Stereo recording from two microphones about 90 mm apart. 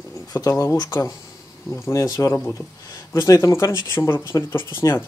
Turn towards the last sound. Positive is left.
turn(degrees=25)  # may be behind; listen again after turning